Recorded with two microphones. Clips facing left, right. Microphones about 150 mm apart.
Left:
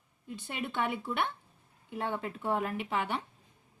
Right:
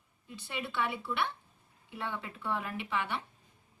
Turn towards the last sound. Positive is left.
turn(degrees=40)  # may be behind; listen again after turning